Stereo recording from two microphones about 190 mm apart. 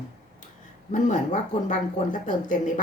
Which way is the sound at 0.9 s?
40° left (ahead or behind).